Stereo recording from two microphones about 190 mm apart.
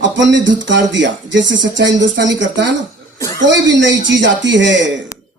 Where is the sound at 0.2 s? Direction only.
70° right (ahead or behind).